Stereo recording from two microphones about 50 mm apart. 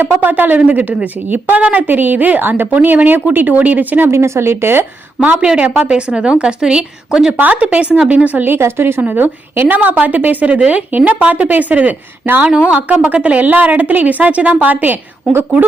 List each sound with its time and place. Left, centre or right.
0.0 s speech: right
4.1 s speech: right
5.2 s a woman's voice: right; by 7.3 s centre
7.3 s a woman's voice: right
8.4 s speech: right
12.4 s a woman's voice: right